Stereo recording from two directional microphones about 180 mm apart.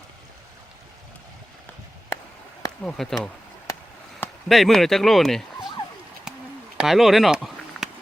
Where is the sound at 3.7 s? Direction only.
15° left (ahead or behind).